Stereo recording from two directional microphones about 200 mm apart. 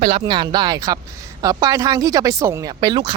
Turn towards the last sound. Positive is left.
turn(degrees=-20)  # may be behind; listen again after turning